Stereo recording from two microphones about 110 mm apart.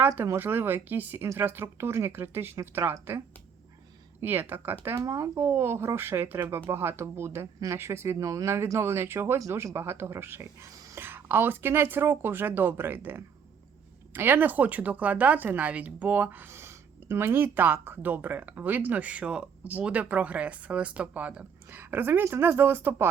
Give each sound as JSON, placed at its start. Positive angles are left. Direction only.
{"t": 0.3, "sound": "speech", "side_deg": -20}
{"t": 4.2, "sound": "speech", "side_deg": -20}